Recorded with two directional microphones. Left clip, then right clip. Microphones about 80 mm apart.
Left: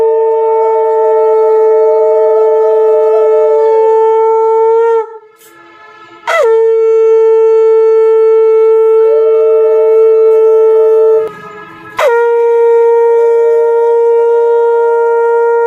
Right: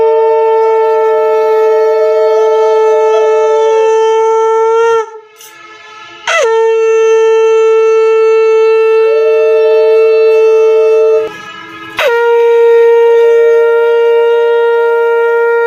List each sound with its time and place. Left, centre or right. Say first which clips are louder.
0.0 s shofar: right 1 dB; centre; by 5.0 s left
6.2 s shofar: left 1 dB; left
9.1 s shofar: even; left
11.9 s shofar: even; left